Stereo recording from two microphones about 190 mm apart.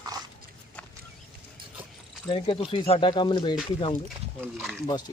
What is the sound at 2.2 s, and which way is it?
Speech, 25° left (ahead or behind).